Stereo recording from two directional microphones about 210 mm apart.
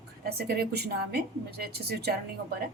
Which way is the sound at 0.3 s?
50° right (ahead or behind).